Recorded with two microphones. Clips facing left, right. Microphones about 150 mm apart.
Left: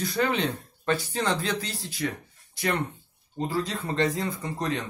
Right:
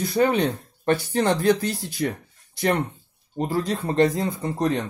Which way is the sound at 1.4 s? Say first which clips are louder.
Right 10 dB; 55° right (ahead or behind).